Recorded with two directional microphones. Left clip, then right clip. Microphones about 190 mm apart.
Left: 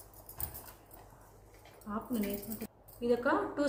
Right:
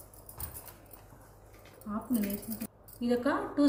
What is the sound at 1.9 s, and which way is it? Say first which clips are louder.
Speech: right 1 dB; 25° left (ahead or behind).